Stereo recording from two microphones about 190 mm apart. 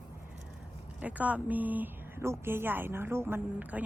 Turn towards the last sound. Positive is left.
turn(degrees=-10)  # may be behind; listen again after turning